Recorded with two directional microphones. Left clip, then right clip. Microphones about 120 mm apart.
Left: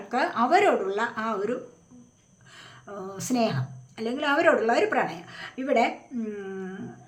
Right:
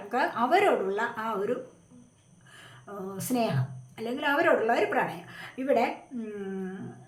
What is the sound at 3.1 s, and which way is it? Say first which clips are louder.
A woman's voice: left 3 dB; 25° left (ahead or behind).